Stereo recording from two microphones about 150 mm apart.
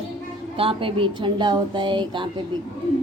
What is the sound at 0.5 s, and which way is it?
A woman's voice, 35° right (ahead or behind).